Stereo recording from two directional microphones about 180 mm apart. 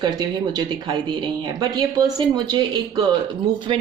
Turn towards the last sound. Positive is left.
turn(degrees=-30)  # may be behind; listen again after turning